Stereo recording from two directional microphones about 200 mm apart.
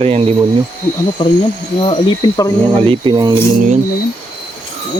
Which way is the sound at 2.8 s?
25° right (ahead or behind).